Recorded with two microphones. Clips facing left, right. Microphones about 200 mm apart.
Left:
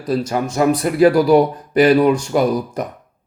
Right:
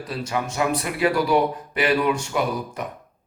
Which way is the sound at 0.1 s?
40° left (ahead or behind).